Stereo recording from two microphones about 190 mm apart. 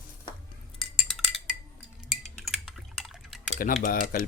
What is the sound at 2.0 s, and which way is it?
Drip, centre (ahead or behind).